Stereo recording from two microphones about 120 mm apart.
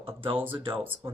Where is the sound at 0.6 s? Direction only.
45° right (ahead or behind).